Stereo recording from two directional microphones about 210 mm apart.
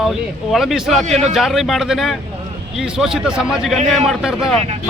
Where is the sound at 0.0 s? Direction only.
Centre (ahead or behind).